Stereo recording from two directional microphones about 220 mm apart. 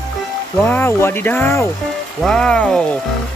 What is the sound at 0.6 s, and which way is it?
Speech, 10° left (ahead or behind).